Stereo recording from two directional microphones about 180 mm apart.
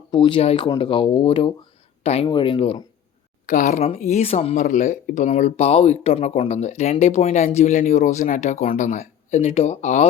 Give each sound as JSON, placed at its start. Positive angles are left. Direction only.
{"t": 0.1, "sound": "speech", "side_deg": 25}
{"t": 3.4, "sound": "speech", "side_deg": 45}